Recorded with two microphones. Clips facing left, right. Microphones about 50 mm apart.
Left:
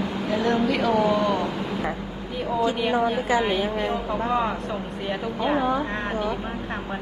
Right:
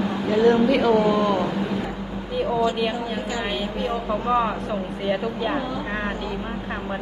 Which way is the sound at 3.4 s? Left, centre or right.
Centre.